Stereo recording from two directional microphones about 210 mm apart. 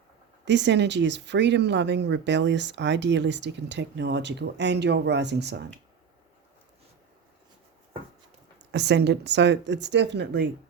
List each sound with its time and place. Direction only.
0.4 s speech: 55° right (ahead or behind)
8.7 s speech: 55° right (ahead or behind)